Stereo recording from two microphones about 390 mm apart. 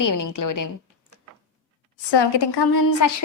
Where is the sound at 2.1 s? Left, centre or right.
Left.